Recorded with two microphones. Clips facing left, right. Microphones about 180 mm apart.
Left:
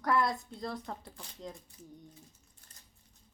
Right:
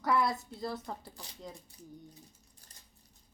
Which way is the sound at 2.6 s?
35° right (ahead or behind).